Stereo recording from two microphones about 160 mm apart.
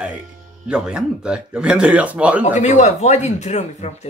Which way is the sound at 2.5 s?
45° left (ahead or behind).